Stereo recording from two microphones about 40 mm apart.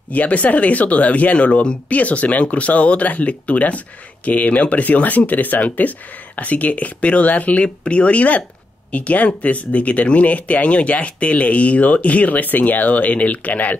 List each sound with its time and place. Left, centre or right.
0.1 s speech: left
7.6 s speech: left